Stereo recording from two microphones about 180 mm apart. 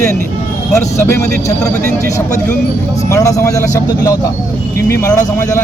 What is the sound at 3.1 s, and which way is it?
Speech, 20° left (ahead or behind).